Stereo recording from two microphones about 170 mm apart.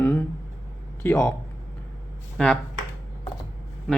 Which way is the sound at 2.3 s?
5° left (ahead or behind).